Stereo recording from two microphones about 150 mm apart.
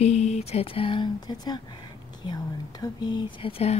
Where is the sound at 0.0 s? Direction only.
45° left (ahead or behind); by 1.6 s 30° left (ahead or behind).